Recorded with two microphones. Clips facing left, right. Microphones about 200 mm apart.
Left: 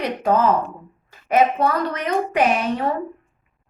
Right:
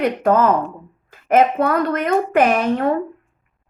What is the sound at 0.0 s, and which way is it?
A woman's voice, 55° right (ahead or behind).